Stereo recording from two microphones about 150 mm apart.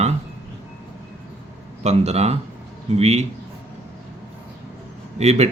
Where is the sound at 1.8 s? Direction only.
45° right (ahead or behind).